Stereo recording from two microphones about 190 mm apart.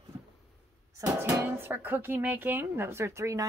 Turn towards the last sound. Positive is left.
turn(degrees=-15)  # may be behind; listen again after turning